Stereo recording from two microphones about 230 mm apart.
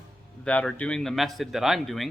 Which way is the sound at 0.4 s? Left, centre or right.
Centre.